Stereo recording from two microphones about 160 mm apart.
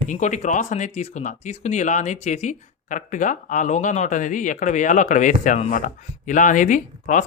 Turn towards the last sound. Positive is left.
turn(degrees=50)  # may be behind; listen again after turning